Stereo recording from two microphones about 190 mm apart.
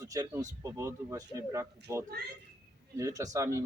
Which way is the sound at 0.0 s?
15° right (ahead or behind).